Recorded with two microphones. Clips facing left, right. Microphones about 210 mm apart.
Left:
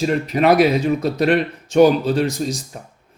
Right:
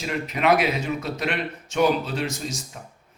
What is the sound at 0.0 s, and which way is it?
Speech, 40° left (ahead or behind).